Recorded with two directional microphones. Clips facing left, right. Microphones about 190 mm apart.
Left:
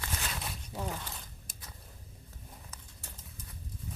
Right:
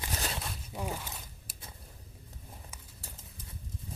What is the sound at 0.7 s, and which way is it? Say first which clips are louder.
Zipper: right 1 dB; 10° right (ahead or behind).